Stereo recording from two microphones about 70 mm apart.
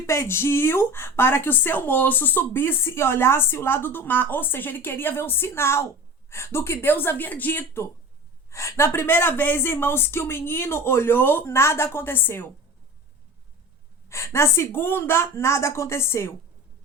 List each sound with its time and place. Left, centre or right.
0.0 s a woman's voice: left
8.4 s a woman's voice: left
14.1 s a woman's voice: left